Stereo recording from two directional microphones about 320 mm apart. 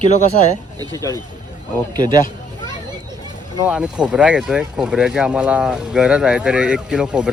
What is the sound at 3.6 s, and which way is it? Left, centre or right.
Speech, centre.